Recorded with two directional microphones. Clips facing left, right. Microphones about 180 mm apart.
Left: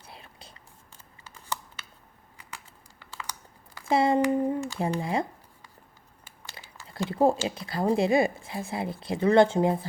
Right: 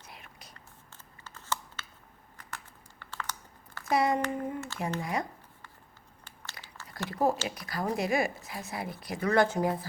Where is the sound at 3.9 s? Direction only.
25° left (ahead or behind).